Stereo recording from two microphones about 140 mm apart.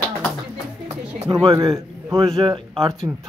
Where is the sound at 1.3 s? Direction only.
40° right (ahead or behind).